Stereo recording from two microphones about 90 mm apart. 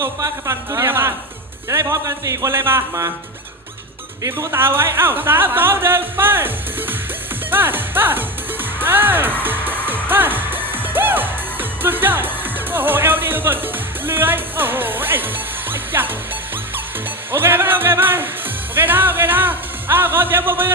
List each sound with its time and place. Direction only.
0.0 s speech: 35° right (ahead or behind)
4.3 s speech: 25° right (ahead or behind)
8.8 s music: 20° right (ahead or behind)
11.8 s speech: 20° right (ahead or behind)
15.7 s music: 25° right (ahead or behind)
17.3 s speech: 25° right (ahead or behind)